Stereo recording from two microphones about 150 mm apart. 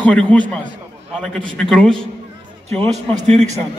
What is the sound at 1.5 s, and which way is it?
Speech, 5° left (ahead or behind).